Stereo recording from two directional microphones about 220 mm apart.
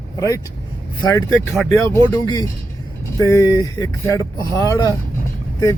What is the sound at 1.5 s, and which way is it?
Speech, centre (ahead or behind).